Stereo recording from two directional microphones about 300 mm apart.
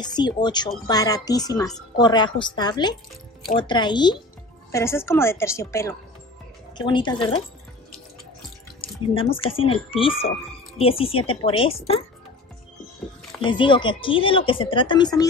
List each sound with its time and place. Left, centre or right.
0.0 s a woman's voice: centre
8.8 s a woman's voice: centre
13.4 s a woman's voice: centre